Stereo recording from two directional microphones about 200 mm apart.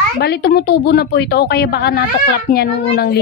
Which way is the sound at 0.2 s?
55° left (ahead or behind).